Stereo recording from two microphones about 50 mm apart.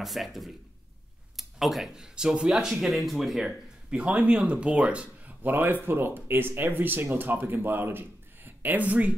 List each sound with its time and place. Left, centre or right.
0.0 s speech: centre
2.5 s speech: centre
3.9 s speech: right
5.4 s speech: right